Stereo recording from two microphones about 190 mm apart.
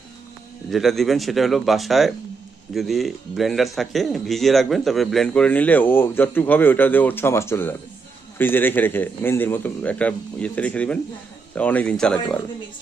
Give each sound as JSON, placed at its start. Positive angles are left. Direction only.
{"t": 0.7, "sound": "a man's voice", "side_deg": 0}